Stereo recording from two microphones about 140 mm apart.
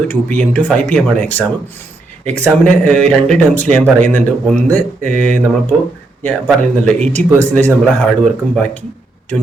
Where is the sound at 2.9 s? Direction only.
5° left (ahead or behind).